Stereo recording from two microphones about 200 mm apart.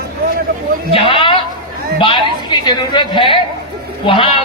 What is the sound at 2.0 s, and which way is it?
A woman's voice, 25° left (ahead or behind).